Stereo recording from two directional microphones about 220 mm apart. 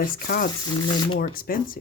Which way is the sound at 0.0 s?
40° left (ahead or behind).